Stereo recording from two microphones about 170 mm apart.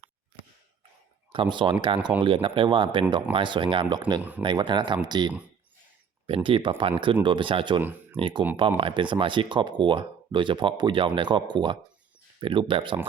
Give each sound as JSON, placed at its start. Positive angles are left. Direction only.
{"t": 1.3, "sound": "speech", "side_deg": -30}
{"t": 4.2, "sound": "speech", "side_deg": -10}
{"t": 4.4, "sound": "speech", "side_deg": -25}